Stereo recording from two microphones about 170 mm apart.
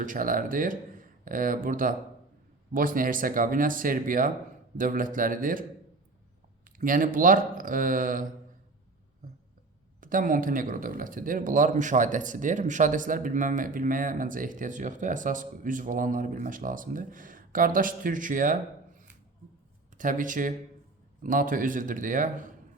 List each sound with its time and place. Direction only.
0.0 s speech: 50° right (ahead or behind)
6.7 s speech: 55° right (ahead or behind)
10.0 s speech: 55° right (ahead or behind)
20.0 s speech: 50° right (ahead or behind)